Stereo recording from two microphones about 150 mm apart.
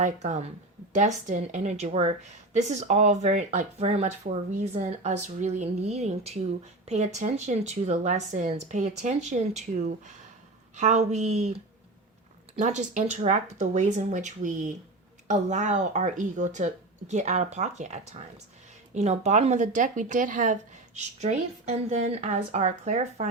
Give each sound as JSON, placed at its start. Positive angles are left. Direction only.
{"t": 0.0, "sound": "a woman's voice", "side_deg": -50}
{"t": 12.5, "sound": "a woman's voice", "side_deg": -55}